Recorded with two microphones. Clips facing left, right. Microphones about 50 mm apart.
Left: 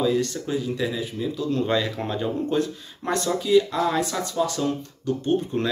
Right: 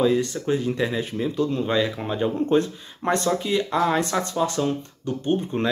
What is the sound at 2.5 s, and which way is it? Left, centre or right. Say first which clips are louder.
Speech: right 4 dB; right.